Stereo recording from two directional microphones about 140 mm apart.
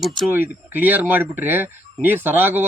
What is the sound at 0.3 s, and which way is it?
Speech, 15° right (ahead or behind).